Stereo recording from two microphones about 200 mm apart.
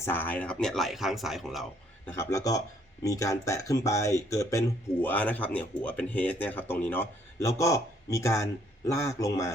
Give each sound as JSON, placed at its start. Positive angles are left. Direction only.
{"t": 0.0, "sound": "speech", "side_deg": 10}
{"t": 2.0, "sound": "speech", "side_deg": 15}